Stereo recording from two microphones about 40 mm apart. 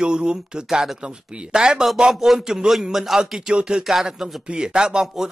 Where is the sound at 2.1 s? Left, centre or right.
Centre.